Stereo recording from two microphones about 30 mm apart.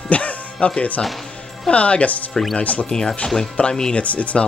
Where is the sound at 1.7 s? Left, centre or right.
Left.